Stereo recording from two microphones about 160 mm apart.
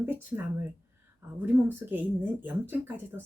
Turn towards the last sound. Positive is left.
turn(degrees=-15)  # may be behind; listen again after turning